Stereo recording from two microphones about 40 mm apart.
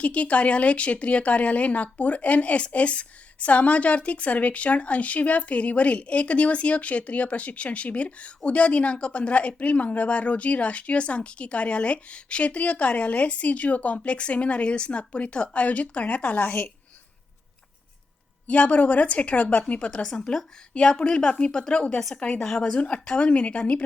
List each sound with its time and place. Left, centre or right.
0.0 s speech: left
18.4 s speech: left
19.9 s a woman's voice: left